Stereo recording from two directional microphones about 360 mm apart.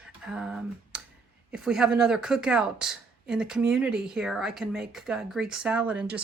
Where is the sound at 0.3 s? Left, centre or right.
Centre.